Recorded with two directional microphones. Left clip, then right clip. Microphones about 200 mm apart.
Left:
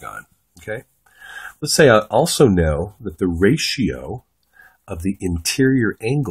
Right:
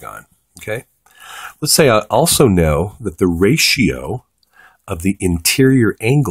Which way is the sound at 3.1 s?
35° right (ahead or behind).